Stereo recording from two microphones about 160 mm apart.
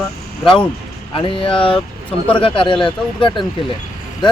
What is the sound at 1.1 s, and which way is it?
Speech, 35° left (ahead or behind).